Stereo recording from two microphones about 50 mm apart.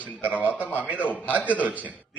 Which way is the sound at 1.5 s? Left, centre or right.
Right.